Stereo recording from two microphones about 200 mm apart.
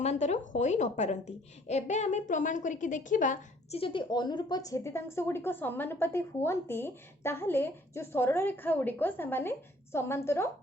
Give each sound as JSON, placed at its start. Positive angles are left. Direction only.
{"t": 0.0, "sound": "a woman's voice", "side_deg": 35}